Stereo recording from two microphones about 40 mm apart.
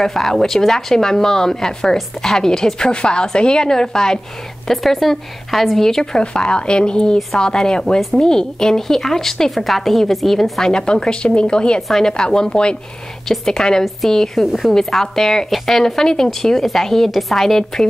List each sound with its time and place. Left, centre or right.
0.0 s a woman's voice: centre
6.1 s a woman's voice: left; by 10.6 s centre
10.6 s speech: centre
13.3 s a woman's voice: centre
14.4 s a woman's voice: centre
14.7 s a woman's voice: centre